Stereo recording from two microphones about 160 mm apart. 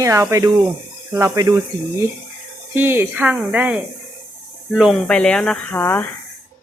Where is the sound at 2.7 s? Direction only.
15° right (ahead or behind); by 6.1 s 15° left (ahead or behind).